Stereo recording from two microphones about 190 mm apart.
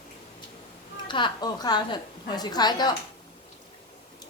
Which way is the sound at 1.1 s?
25° left (ahead or behind).